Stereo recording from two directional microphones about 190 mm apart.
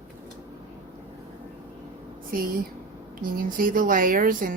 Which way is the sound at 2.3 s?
50° right (ahead or behind).